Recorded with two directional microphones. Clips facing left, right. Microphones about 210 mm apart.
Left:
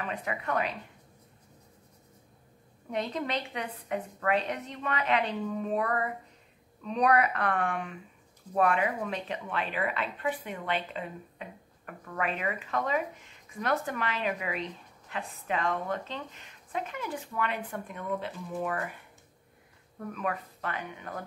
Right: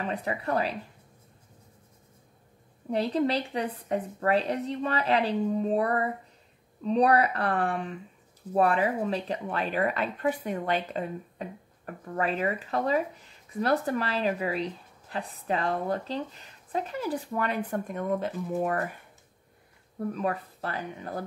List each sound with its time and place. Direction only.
0.0 s speech: 35° right (ahead or behind)
2.9 s speech: 35° right (ahead or behind)
20.0 s speech: 35° right (ahead or behind)